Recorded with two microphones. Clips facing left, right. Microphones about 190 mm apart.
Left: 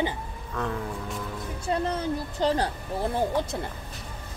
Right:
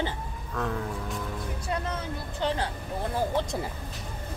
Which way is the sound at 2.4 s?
40° left (ahead or behind).